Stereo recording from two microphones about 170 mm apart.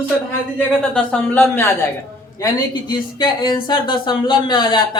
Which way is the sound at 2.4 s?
25° left (ahead or behind).